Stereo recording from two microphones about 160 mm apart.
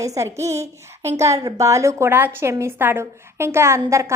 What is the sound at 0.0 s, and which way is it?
Speech, 20° right (ahead or behind).